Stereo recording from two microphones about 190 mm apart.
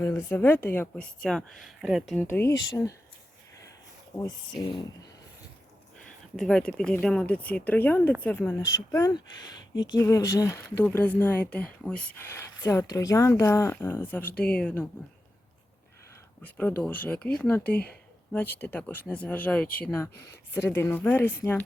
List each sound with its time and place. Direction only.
0.0 s speech: 10° left (ahead or behind)
2.2 s speech: 10° left (ahead or behind)
4.1 s speech: 15° left (ahead or behind)
6.3 s speech: 5° left (ahead or behind)
16.4 s speech: 10° left (ahead or behind)